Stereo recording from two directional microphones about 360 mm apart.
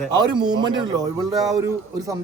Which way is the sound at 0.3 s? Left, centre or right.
Centre.